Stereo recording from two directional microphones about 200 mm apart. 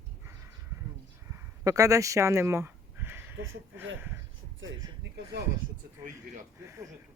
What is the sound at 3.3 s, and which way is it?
Speech, 80° right.